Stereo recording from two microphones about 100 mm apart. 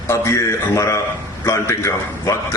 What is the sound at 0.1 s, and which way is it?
A man's voice, 30° left (ahead or behind).